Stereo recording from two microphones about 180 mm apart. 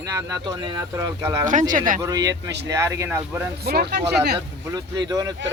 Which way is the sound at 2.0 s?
20° right (ahead or behind).